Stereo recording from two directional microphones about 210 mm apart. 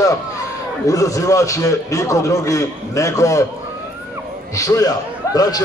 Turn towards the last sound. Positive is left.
turn(degrees=15)  # may be behind; listen again after turning